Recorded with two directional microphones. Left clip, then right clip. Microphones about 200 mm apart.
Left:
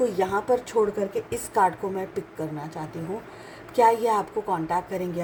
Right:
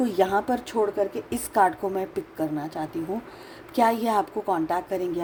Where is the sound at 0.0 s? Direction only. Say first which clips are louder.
Right 1 dB; 40° right (ahead or behind).